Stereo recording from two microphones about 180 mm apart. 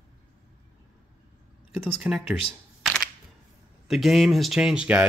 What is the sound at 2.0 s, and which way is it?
Speech, 5° right (ahead or behind).